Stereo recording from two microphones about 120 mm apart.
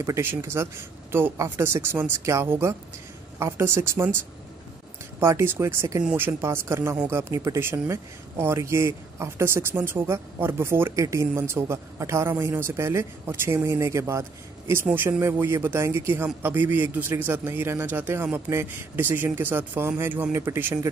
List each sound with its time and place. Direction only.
0.0 s speech: 20° right (ahead or behind)
5.2 s a man's voice: 20° right (ahead or behind)